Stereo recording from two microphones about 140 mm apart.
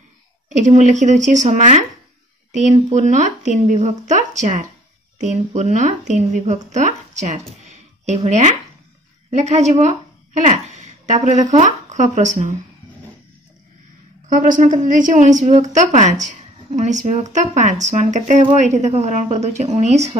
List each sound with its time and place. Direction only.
0.5 s a woman's voice: 60° right (ahead or behind)
14.3 s a woman's voice: 65° right (ahead or behind)